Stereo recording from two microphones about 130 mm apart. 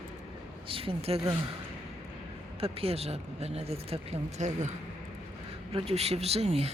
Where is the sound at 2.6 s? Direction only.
50° right (ahead or behind); by 4.7 s 65° right (ahead or behind).